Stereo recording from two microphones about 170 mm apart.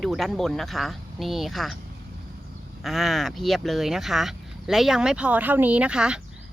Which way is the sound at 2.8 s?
Centre (ahead or behind).